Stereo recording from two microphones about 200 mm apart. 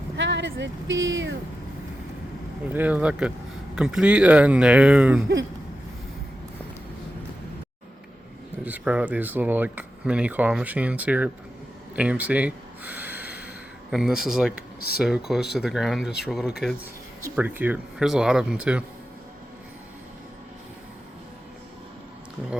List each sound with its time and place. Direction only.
0.2 s speech: 65° right (ahead or behind)
2.6 s speech: 10° right (ahead or behind)
8.6 s speech: 5° right (ahead or behind)
11.9 s a sound: 5° right (ahead or behind)
13.9 s speech: centre (ahead or behind)
14.5 s speech: 50° left (ahead or behind)
15.0 s speech: centre (ahead or behind)